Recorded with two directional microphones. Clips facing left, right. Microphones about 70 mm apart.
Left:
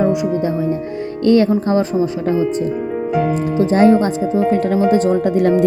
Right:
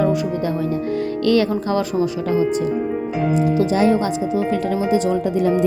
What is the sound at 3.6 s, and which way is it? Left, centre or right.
Speech, left.